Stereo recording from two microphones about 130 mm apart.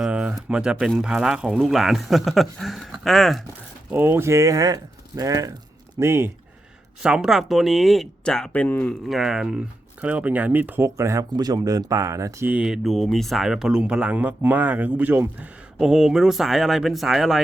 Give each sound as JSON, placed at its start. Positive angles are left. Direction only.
{"t": 0.0, "sound": "a sound", "side_deg": -10}
{"t": 0.4, "sound": "speech", "side_deg": -5}
{"t": 3.9, "sound": "speech", "side_deg": -15}
{"t": 7.0, "sound": "speech", "side_deg": -5}
{"t": 9.0, "sound": "speech", "side_deg": -5}
{"t": 12.5, "sound": "speech", "side_deg": -10}